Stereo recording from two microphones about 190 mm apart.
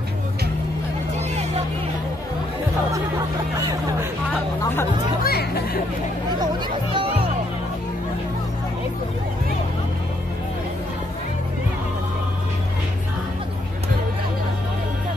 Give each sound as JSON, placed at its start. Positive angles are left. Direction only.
{"t": 5.2, "sound": "speech", "side_deg": 55}